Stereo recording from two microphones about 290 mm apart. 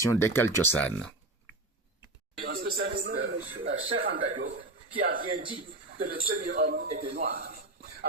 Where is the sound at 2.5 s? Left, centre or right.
Right.